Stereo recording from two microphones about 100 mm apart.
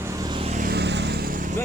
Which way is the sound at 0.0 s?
30° right (ahead or behind).